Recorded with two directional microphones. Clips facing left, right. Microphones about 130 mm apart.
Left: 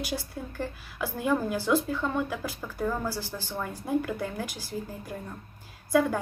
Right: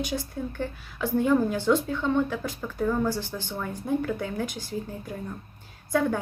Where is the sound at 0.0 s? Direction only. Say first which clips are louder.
Right 4 dB; 5° left (ahead or behind).